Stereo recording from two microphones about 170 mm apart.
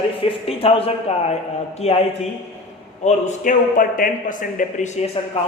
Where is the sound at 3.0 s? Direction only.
45° left (ahead or behind).